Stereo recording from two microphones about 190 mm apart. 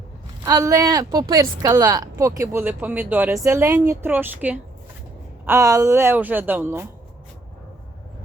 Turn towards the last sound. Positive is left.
turn(degrees=-10)  # may be behind; listen again after turning